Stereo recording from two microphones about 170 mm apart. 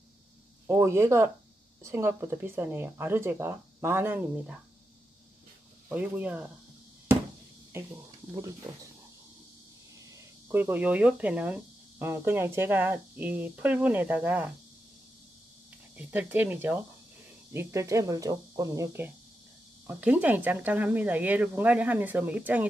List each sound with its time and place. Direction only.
0.7 s speech: 15° right (ahead or behind)
5.9 s speech: 10° right (ahead or behind)
10.5 s speech: 10° right (ahead or behind)
16.0 s speech: 10° right (ahead or behind)